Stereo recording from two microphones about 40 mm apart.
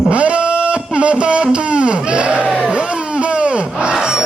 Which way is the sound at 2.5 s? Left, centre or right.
Right.